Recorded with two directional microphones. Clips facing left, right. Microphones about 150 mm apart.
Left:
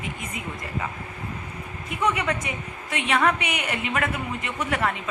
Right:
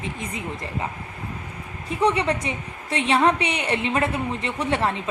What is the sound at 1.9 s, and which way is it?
A woman's voice, 30° right (ahead or behind).